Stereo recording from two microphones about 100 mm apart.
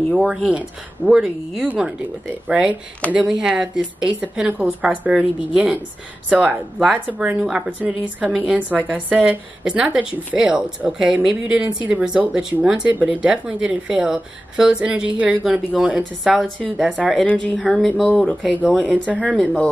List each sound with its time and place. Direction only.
0.3 s speech: 10° right (ahead or behind)
16.4 s speech: 10° left (ahead or behind)
18.4 s speech: 15° right (ahead or behind)